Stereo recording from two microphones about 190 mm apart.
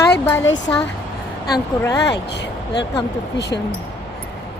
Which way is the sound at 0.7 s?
5° left (ahead or behind).